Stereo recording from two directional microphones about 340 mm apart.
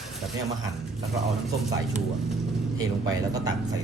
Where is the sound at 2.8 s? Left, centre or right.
Centre.